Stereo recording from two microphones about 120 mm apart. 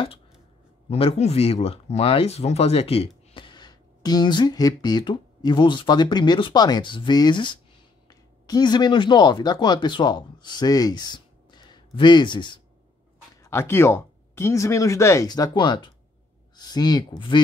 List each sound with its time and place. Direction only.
0.8 s speech: 55° left (ahead or behind); by 12.5 s 40° left (ahead or behind)
13.4 s speech: 20° left (ahead or behind)